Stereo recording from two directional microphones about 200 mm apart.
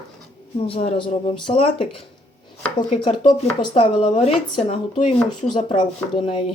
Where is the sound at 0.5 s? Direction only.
30° left (ahead or behind).